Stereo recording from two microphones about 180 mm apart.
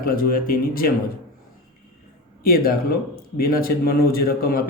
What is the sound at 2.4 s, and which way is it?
Speech, 55° left (ahead or behind).